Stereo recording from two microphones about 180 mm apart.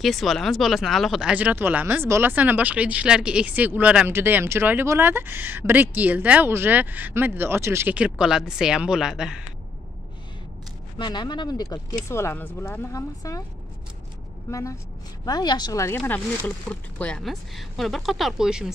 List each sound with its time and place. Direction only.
0.0 s speech: centre (ahead or behind)
11.0 s speech: 25° left (ahead or behind)
14.5 s speech: 15° left (ahead or behind); by 18.7 s 5° right (ahead or behind)